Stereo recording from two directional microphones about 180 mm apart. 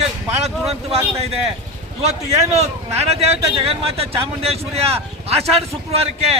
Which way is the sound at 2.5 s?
35° right (ahead or behind).